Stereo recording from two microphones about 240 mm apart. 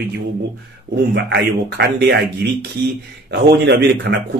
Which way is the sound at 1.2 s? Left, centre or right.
Right.